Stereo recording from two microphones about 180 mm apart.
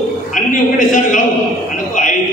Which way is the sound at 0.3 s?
45° left (ahead or behind).